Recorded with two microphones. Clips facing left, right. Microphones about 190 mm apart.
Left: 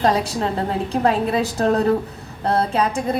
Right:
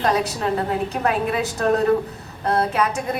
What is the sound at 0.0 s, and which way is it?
A woman's voice, 30° left (ahead or behind).